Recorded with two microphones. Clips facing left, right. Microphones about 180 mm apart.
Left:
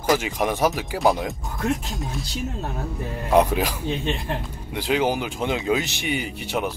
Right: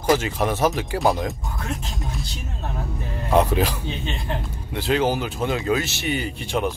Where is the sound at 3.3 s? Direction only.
10° left (ahead or behind).